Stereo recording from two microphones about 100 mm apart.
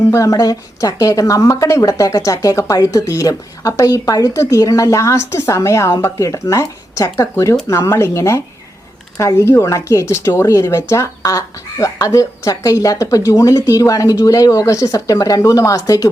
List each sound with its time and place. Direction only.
0.1 s speech: 35° left (ahead or behind)